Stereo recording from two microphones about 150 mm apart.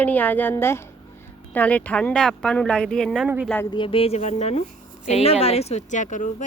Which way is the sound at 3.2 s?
10° right (ahead or behind).